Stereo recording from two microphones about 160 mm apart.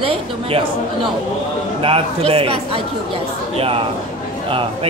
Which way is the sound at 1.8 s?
35° right (ahead or behind).